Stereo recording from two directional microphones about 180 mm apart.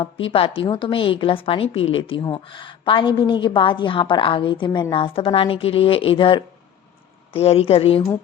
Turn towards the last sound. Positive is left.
turn(degrees=30)  # may be behind; listen again after turning